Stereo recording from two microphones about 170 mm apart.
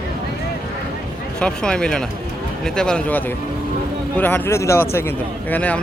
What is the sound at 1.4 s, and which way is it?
A man's voice, 5° left (ahead or behind).